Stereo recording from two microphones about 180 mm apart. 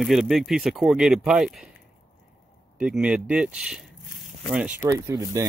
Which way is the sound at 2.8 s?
5° right (ahead or behind).